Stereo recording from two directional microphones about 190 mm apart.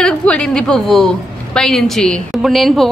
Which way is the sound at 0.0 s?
5° left (ahead or behind).